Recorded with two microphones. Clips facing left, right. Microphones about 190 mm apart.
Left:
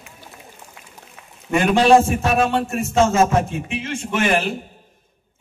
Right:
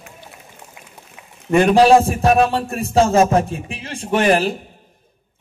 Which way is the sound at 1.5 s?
35° right (ahead or behind).